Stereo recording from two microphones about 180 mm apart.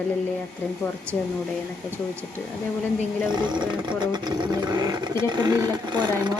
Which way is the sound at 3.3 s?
25° right (ahead or behind).